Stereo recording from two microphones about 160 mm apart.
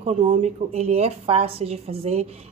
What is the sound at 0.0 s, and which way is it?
A woman's voice, 35° right (ahead or behind).